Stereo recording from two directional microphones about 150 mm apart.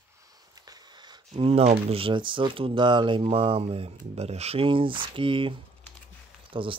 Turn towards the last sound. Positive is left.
turn(degrees=-35)  # may be behind; listen again after turning